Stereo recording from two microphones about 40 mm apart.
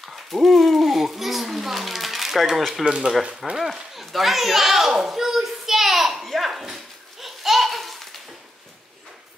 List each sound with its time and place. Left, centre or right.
0.1 s a sound: centre
2.8 s speech: right
3.5 s children playing: centre